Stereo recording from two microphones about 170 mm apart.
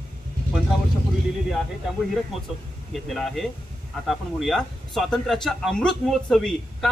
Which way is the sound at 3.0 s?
Centre (ahead or behind).